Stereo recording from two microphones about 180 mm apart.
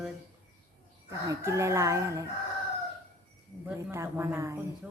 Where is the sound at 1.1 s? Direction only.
15° right (ahead or behind).